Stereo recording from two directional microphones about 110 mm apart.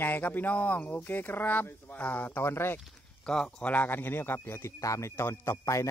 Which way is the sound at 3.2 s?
5° left (ahead or behind).